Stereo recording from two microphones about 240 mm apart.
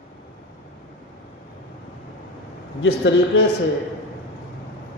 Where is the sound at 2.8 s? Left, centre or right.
Left.